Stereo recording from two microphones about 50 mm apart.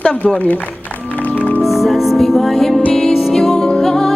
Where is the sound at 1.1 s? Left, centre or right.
Left.